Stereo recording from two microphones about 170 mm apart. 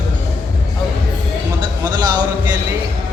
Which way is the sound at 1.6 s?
25° right (ahead or behind).